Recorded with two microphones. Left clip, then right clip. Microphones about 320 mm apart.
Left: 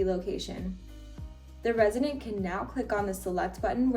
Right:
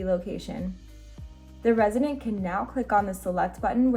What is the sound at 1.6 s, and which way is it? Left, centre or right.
A woman's voice, left.